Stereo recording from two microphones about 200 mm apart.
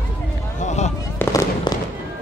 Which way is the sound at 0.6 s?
35° left (ahead or behind).